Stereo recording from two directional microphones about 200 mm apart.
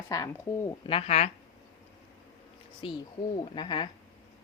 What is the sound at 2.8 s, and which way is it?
Speech, 25° left (ahead or behind).